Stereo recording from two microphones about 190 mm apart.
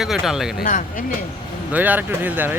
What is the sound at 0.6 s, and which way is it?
Speech, 45° left (ahead or behind).